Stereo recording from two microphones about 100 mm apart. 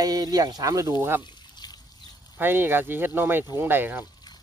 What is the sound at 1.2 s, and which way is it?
Pour, 45° left (ahead or behind).